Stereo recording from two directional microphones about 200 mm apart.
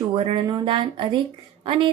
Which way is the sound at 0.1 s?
25° right (ahead or behind).